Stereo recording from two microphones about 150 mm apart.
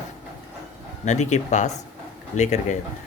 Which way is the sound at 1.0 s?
50° left (ahead or behind).